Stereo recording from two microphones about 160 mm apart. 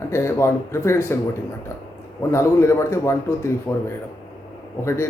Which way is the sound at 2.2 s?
15° left (ahead or behind).